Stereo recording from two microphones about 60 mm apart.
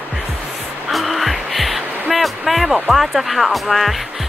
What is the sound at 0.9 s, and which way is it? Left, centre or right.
Music, centre.